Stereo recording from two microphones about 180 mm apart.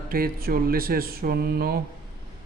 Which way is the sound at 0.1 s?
55° right (ahead or behind).